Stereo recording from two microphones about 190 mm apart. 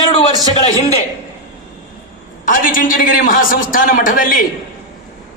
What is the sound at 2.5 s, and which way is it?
A man's voice, 45° left (ahead or behind).